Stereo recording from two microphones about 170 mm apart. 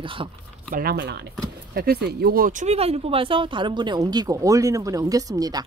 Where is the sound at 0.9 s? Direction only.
90° right.